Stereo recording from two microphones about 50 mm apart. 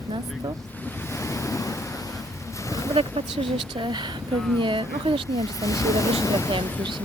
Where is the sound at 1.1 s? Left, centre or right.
Left.